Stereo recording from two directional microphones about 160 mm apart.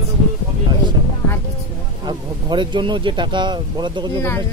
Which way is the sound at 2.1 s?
30° right (ahead or behind).